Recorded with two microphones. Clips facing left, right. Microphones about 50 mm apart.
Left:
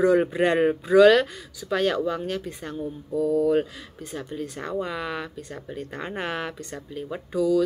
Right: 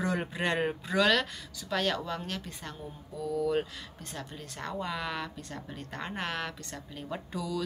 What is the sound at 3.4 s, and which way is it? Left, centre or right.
A woman's voice, centre.